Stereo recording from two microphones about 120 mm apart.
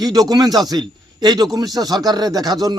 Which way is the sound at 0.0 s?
30° right (ahead or behind).